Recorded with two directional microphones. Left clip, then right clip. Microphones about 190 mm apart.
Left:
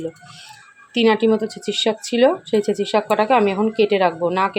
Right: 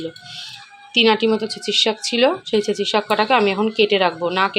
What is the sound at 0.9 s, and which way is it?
A woman's voice, 15° left (ahead or behind).